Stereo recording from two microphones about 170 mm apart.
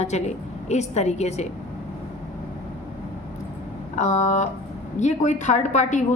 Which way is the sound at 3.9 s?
45° left (ahead or behind).